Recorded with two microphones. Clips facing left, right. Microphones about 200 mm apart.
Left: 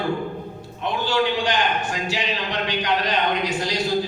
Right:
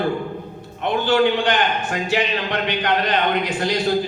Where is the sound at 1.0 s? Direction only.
55° right (ahead or behind).